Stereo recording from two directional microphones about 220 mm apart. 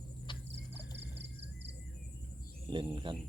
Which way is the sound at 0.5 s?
50° right (ahead or behind).